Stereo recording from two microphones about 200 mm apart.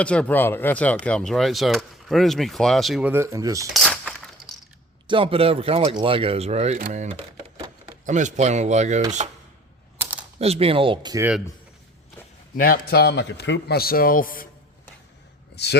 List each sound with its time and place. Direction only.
0.0 s speech: 5° left (ahead or behind); by 3.7 s 15° right (ahead or behind)
3.7 s a sound: centre (ahead or behind)
5.0 s speech: 25° right (ahead or behind)
10.0 s typing: 5° right (ahead or behind)
10.3 s speech: 30° right (ahead or behind)
12.5 s a man's voice: 45° left (ahead or behind)
15.5 s speech: 55° left (ahead or behind)